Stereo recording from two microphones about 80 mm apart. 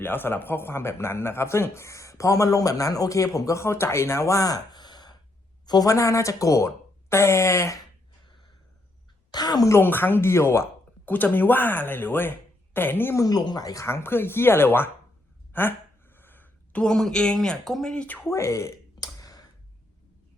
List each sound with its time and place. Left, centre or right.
0.0 s a woman's voice: left
5.9 s speech: left
9.3 s a woman's voice: left
9.8 s speech: left
13.1 s speech: left
13.8 s speech: left
15.5 s a sound: left
16.8 s speech: centre
18.3 s a sound: left